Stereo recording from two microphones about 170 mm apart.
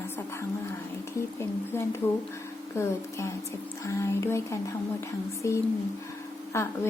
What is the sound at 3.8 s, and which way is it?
A woman's voice, 15° left (ahead or behind).